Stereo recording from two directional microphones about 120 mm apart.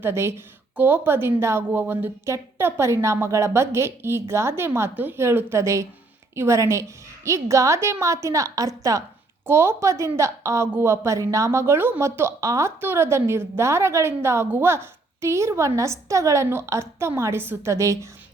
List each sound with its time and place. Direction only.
0.0 s a woman's voice: 20° right (ahead or behind)